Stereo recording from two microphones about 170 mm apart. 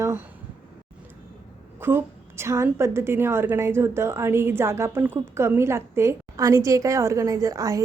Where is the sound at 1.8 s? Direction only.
15° right (ahead or behind).